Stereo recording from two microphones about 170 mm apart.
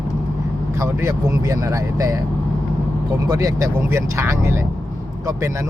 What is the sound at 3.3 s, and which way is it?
Speech, 20° right (ahead or behind).